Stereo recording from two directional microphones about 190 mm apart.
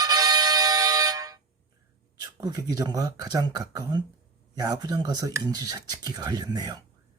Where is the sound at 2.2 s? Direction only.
20° right (ahead or behind).